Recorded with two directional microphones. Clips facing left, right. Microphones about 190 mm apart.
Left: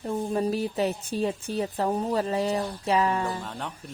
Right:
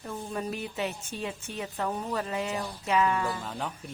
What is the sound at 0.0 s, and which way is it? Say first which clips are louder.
A woman's voice: left 8 dB; 35° left (ahead or behind).